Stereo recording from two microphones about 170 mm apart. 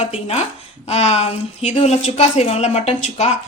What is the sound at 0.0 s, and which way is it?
A woman's voice, 40° left (ahead or behind).